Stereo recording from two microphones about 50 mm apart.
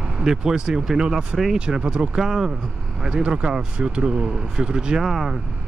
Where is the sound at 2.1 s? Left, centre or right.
Centre.